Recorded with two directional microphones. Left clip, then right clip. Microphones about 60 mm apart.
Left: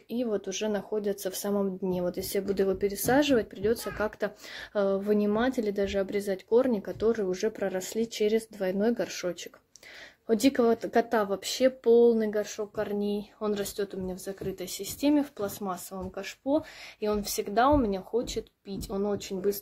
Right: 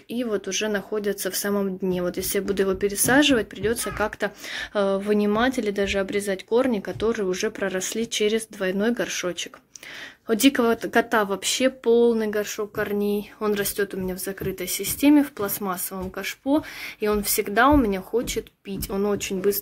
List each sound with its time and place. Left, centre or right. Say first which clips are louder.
0.1 s speech: right 4 dB; left
10.2 s speech: right 4 dB; centre